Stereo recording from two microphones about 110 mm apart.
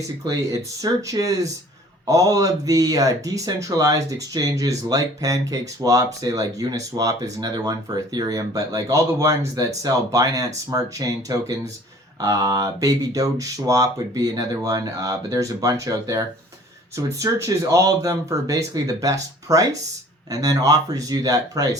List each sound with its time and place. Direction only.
0.8 s speech: 30° right (ahead or behind)